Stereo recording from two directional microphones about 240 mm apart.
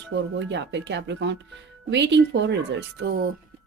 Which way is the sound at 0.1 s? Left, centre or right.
Right.